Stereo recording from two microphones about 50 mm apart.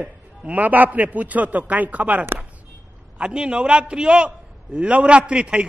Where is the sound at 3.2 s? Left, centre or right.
Centre.